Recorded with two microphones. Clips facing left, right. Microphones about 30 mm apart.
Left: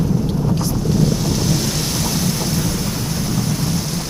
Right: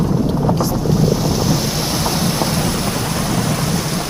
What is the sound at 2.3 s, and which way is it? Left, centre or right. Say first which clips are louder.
Thunder: right 3 dB; right.